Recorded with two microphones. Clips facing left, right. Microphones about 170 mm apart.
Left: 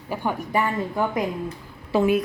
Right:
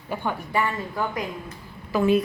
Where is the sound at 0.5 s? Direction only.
15° left (ahead or behind).